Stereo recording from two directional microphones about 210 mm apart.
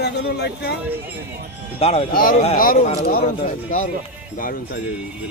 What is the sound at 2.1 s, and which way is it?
Speech, 45° left (ahead or behind).